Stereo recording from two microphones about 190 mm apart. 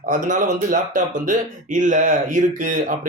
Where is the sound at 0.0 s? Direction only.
40° right (ahead or behind).